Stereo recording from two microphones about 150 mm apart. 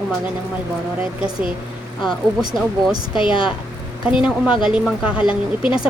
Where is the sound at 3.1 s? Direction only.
35° left (ahead or behind).